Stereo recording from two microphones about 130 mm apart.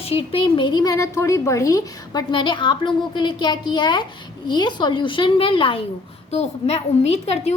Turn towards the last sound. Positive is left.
turn(degrees=55)  # may be behind; listen again after turning